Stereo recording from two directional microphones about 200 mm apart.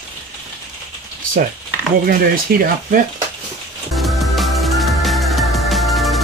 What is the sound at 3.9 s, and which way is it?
Music, centre (ahead or behind).